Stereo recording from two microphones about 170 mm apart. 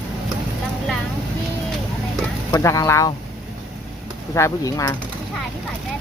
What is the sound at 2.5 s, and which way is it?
Speech, 20° left (ahead or behind).